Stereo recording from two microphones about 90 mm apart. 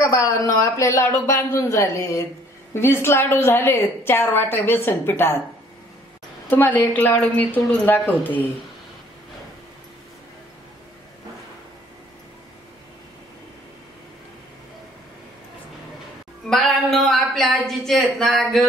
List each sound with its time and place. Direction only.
0.0 s a woman's voice: 35° left (ahead or behind)
6.5 s a woman's voice: 20° left (ahead or behind)
16.4 s a woman's voice: 5° left (ahead or behind)